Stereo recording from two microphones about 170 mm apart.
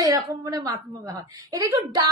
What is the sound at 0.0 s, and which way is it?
Speech, 25° right (ahead or behind).